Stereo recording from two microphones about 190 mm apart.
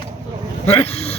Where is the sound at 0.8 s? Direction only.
30° left (ahead or behind).